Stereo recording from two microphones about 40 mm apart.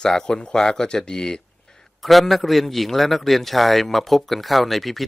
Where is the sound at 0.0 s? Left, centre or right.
Centre.